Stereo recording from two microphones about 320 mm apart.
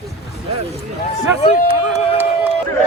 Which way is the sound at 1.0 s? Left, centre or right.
Centre.